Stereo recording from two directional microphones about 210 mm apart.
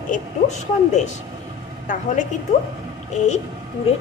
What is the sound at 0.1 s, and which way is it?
A woman's voice, 35° left (ahead or behind).